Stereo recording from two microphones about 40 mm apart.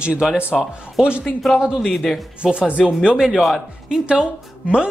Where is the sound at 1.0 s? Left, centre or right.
Centre.